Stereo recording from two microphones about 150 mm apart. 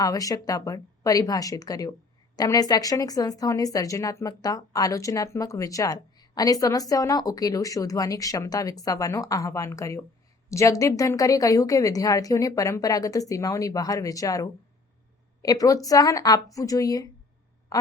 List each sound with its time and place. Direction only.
0.0 s a woman's voice: 25° left (ahead or behind)